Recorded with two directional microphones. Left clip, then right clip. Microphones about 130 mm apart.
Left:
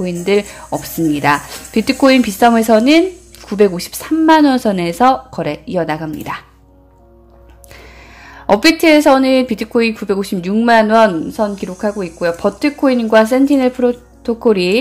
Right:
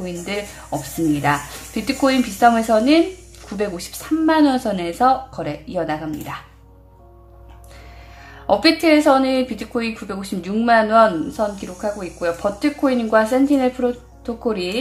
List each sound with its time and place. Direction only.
0.0 s a woman's voice: 50° left (ahead or behind)
8.2 s a woman's voice: 45° left (ahead or behind)